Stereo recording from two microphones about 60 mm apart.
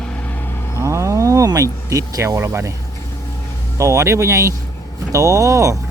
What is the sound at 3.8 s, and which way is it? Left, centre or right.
Speech, right.